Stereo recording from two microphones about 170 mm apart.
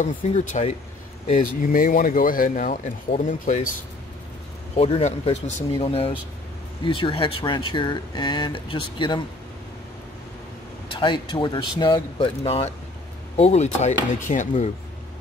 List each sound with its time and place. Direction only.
0.0 s speech: 45° left (ahead or behind)
4.7 s speech: 35° left (ahead or behind)
10.9 s speech: 30° left (ahead or behind); by 14.7 s 45° left (ahead or behind)